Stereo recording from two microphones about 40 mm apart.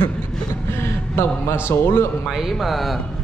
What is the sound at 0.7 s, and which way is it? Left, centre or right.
A man's voice, left.